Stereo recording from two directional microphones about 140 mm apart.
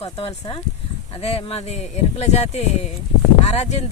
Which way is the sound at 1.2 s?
45° left (ahead or behind).